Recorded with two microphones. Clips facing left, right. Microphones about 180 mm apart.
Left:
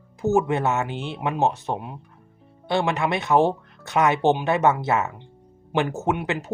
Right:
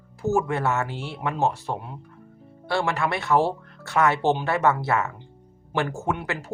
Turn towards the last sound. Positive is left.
turn(degrees=20)  # may be behind; listen again after turning